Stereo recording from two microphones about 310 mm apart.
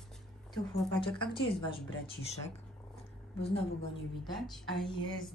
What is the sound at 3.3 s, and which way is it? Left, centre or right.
Speech, centre.